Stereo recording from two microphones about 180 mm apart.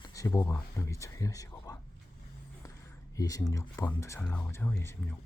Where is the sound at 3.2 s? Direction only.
20° left (ahead or behind).